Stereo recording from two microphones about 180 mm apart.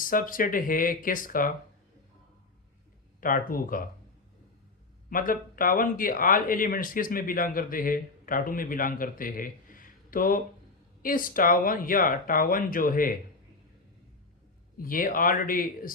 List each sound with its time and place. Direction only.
0.0 s speech: 50° left (ahead or behind)
3.2 s speech: 50° left (ahead or behind)
5.0 s speech: 50° left (ahead or behind)
14.8 s speech: 50° left (ahead or behind)